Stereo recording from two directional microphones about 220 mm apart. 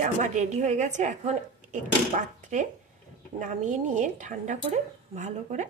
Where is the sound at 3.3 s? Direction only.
35° right (ahead or behind).